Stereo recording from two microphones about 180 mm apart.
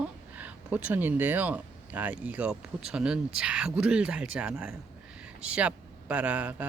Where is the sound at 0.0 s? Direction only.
10° right (ahead or behind).